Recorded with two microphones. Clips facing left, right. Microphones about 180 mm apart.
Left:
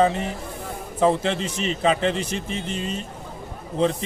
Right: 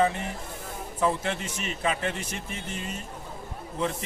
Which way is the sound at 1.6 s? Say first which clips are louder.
Left 9 dB; 25° left (ahead or behind).